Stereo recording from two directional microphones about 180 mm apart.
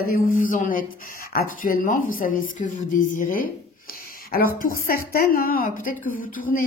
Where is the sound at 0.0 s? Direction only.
50° left (ahead or behind).